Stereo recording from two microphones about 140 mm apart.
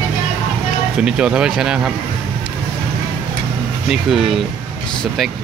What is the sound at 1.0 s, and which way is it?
Speech, 5° right (ahead or behind).